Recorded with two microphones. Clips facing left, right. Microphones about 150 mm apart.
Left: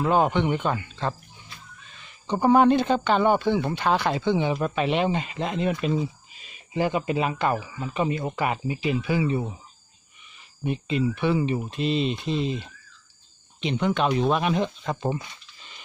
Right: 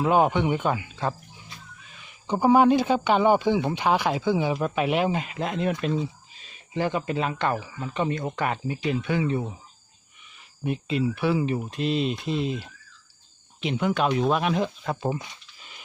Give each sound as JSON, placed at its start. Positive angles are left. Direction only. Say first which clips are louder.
{"t": 0.0, "sound": "speech", "louder": "right 1 dB", "side_deg": -10}
{"t": 10.6, "sound": "speech", "louder": "left 1 dB", "side_deg": 0}
{"t": 15.5, "sound": "dog", "louder": "even", "side_deg": -5}